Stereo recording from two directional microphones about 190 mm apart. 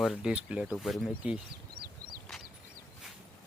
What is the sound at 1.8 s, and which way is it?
Bird flight, 50° right (ahead or behind).